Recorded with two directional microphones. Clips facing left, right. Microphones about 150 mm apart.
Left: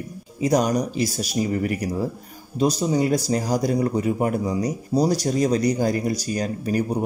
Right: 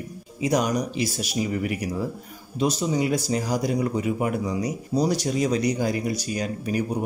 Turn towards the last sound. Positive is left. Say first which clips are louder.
# left 3 dB
turn(degrees=40)  # may be behind; listen again after turning